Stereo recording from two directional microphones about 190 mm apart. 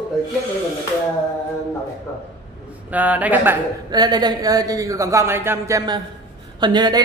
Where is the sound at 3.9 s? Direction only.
20° right (ahead or behind).